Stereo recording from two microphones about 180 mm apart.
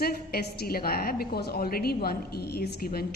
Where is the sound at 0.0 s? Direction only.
60° left (ahead or behind).